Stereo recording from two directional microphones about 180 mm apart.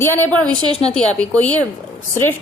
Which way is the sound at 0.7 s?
35° left (ahead or behind).